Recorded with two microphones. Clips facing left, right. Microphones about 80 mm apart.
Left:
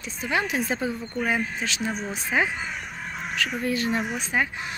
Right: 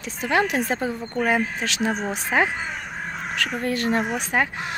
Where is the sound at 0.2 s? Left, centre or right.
Right.